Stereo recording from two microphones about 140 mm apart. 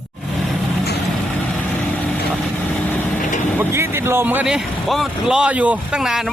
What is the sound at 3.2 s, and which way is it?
Vehicle, 65° left (ahead or behind).